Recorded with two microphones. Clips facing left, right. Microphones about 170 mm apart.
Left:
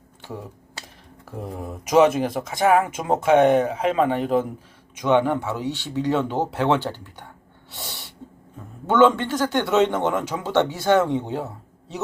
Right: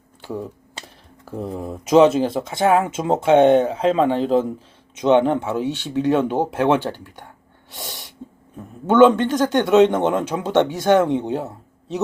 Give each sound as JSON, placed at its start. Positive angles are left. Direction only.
{"t": 1.4, "sound": "speech", "side_deg": -30}
{"t": 7.7, "sound": "sneeze", "side_deg": -15}
{"t": 8.9, "sound": "speech", "side_deg": -15}